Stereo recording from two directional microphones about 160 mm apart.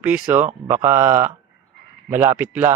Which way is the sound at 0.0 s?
10° right (ahead or behind).